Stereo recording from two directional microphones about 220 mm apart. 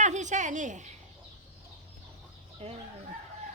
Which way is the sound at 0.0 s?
35° right (ahead or behind).